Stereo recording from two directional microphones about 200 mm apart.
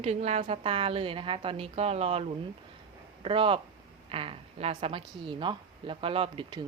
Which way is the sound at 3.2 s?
30° right (ahead or behind).